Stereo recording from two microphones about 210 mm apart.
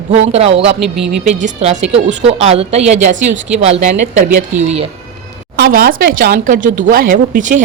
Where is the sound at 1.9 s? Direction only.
60° right (ahead or behind).